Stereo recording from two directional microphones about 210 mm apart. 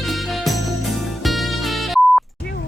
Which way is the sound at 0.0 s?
Centre (ahead or behind).